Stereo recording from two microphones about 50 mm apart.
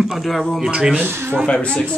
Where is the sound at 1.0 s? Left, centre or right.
Right.